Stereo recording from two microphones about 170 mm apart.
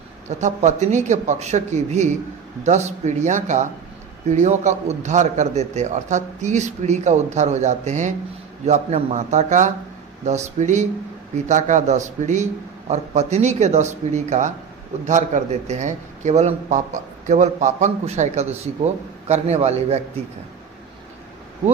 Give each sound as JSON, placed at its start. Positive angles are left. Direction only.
{"t": 0.3, "sound": "a man's voice", "side_deg": -45}